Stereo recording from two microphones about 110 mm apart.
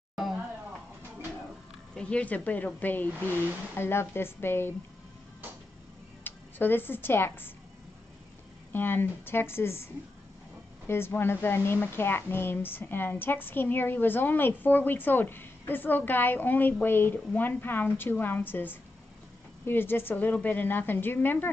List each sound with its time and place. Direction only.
0.1 s a sound: centre (ahead or behind)
2.0 s a woman's voice: 10° left (ahead or behind)
6.2 s speech: 20° left (ahead or behind)
8.7 s a woman's voice: 20° left (ahead or behind)
10.9 s a woman's voice: 20° left (ahead or behind)